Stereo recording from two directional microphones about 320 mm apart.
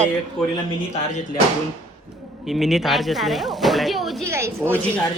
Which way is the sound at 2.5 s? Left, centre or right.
Centre.